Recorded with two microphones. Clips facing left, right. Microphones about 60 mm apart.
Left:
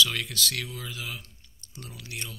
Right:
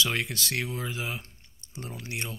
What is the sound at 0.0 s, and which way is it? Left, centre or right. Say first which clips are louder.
Speech: left 2 dB; right.